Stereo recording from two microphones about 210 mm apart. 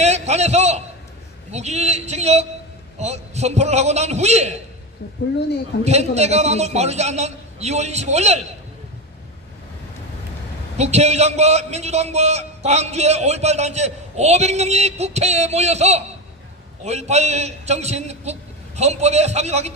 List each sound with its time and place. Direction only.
0.0 s a sound: 30° right (ahead or behind)
1.5 s a man's voice: 30° right (ahead or behind)
5.8 s a man's voice: 30° right (ahead or behind)
10.8 s a man's voice: 30° right (ahead or behind)